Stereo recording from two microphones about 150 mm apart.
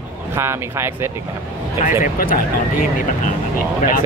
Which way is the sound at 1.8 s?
65° left (ahead or behind).